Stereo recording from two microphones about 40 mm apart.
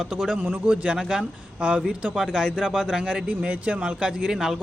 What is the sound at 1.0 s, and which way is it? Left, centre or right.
A man's voice, centre.